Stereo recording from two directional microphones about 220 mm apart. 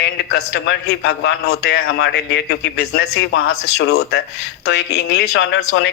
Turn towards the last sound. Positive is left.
turn(degrees=50)  # may be behind; listen again after turning